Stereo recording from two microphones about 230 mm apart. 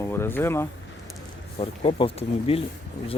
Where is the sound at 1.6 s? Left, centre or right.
Left.